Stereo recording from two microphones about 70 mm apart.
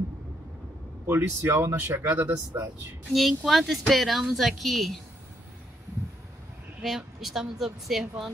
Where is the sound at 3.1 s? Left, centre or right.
Centre.